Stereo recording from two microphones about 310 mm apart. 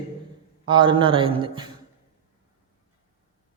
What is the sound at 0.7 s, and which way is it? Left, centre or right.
Speech, centre.